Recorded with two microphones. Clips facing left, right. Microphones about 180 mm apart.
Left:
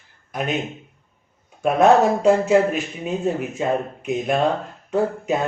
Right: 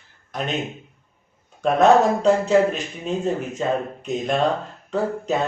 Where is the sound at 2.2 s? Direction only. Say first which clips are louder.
Left 1 dB; 10° left (ahead or behind).